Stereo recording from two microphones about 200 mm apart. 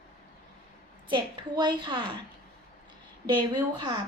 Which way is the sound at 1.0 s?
20° right (ahead or behind).